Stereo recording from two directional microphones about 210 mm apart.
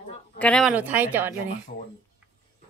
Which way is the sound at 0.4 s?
5° left (ahead or behind).